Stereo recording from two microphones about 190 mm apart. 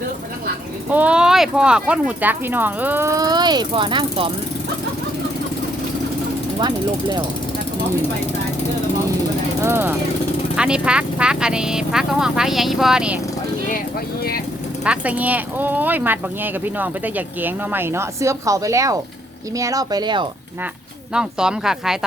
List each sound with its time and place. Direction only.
0.9 s speech: 5° right (ahead or behind); by 4.3 s 25° right (ahead or behind)
6.6 s speech: 20° right (ahead or behind)
9.6 s speech: 10° right (ahead or behind)
14.8 s speech: 10° right (ahead or behind)
21.1 s speech: 5° right (ahead or behind)